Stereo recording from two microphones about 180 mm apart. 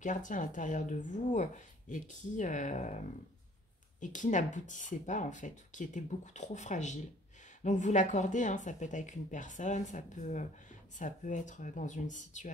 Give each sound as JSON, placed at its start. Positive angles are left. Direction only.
{"t": 0.0, "sound": "speech", "side_deg": 45}